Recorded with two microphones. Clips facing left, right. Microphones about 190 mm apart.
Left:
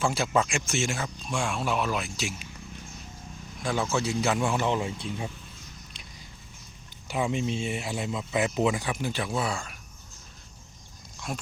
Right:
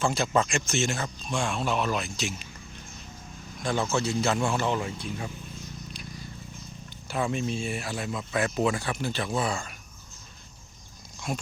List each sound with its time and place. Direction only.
0.0 s speech: 10° left (ahead or behind)
3.6 s speech: 10° left (ahead or behind)
7.1 s speech: 15° left (ahead or behind)
11.3 s speech: centre (ahead or behind)